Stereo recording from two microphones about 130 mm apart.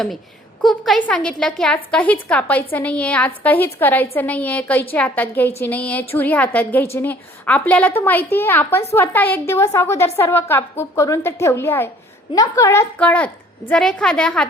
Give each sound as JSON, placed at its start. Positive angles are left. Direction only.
{"t": 0.6, "sound": "a woman's voice", "side_deg": 0}
{"t": 13.0, "sound": "a woman's voice", "side_deg": 10}